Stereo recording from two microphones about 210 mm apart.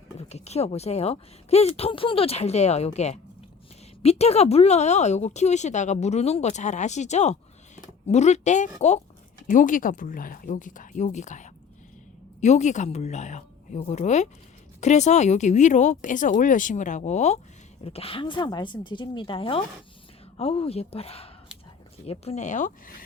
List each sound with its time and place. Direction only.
0.2 s speech: 30° left (ahead or behind)